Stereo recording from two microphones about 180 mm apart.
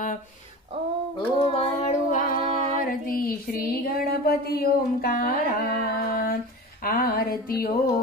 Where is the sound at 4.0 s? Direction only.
55° left (ahead or behind).